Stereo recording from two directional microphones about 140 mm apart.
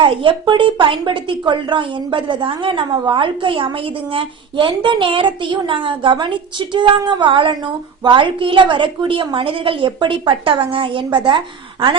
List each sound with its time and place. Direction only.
0.0 s a woman's voice: 40° right (ahead or behind)